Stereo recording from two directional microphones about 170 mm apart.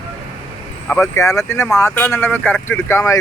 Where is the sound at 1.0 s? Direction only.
20° left (ahead or behind).